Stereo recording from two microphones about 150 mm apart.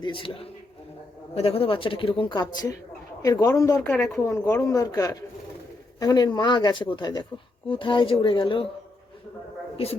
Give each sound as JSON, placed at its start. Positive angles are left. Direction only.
{"t": 0.0, "sound": "a woman's voice", "side_deg": 35}
{"t": 3.8, "sound": "a woman's voice", "side_deg": 10}